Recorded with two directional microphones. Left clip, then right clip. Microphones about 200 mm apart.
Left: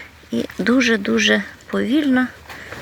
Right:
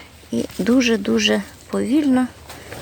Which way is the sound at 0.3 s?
5° right (ahead or behind).